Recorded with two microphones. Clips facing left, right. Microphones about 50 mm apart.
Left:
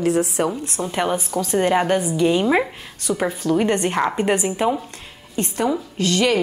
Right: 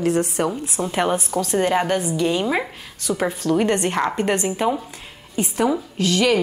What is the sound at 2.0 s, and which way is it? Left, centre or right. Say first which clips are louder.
Speech: left 2 dB; centre.